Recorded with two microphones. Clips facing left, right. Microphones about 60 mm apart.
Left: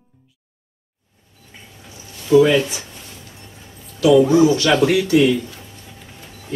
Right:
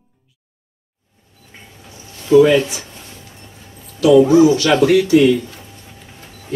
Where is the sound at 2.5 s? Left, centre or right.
Centre.